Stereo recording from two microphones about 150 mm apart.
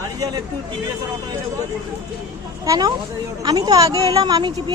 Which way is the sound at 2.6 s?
25° right (ahead or behind).